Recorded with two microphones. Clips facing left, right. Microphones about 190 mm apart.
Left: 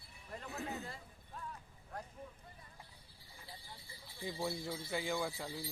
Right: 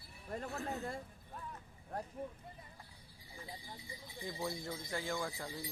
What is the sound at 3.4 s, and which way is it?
Sheep, 20° right (ahead or behind).